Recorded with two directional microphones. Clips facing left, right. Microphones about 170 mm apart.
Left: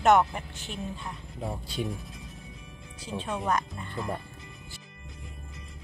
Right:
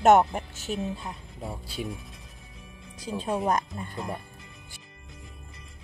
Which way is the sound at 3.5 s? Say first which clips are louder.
Right 2 dB; 40° right (ahead or behind).